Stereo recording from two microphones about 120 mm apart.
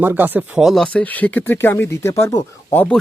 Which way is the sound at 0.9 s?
15° left (ahead or behind).